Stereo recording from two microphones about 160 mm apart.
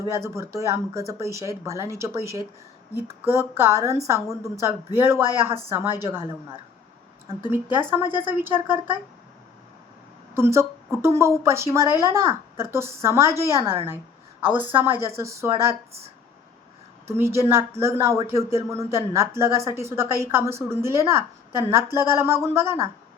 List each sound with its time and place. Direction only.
0.1 s a woman's voice: 15° right (ahead or behind)
3.6 s a woman's voice: 15° right (ahead or behind)
10.3 s a woman's voice: 15° right (ahead or behind)
15.9 s speech: 40° right (ahead or behind)
17.1 s a woman's voice: 15° right (ahead or behind)